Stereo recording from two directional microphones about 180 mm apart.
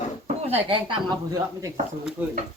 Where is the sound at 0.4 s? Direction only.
30° right (ahead or behind).